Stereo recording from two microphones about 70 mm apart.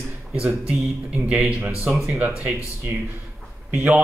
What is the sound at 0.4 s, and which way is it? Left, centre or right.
Speech, centre.